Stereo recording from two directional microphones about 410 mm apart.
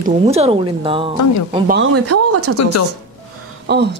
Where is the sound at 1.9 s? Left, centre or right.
Right.